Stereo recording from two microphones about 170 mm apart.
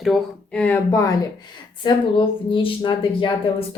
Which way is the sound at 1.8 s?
30° left (ahead or behind).